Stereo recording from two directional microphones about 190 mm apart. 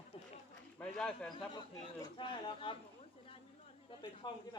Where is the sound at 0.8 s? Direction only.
5° left (ahead or behind).